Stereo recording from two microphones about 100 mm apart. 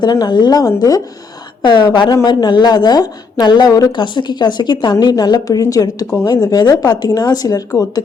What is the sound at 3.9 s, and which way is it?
A woman's voice, 50° left (ahead or behind).